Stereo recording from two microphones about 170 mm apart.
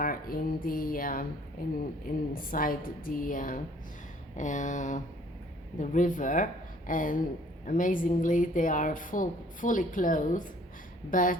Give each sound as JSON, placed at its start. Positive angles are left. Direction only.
{"t": 0.0, "sound": "a woman's voice", "side_deg": 55}